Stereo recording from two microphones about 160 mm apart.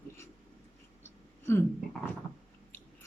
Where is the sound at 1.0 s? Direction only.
15° left (ahead or behind).